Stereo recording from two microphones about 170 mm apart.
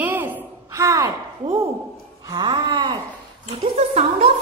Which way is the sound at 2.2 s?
25° right (ahead or behind).